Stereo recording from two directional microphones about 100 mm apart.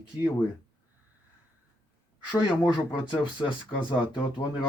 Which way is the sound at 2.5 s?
45° left (ahead or behind).